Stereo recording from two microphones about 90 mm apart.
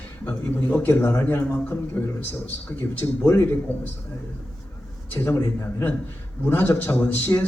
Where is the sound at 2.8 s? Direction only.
20° left (ahead or behind).